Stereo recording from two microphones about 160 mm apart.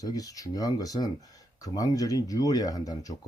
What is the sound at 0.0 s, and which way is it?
Speech, 20° left (ahead or behind).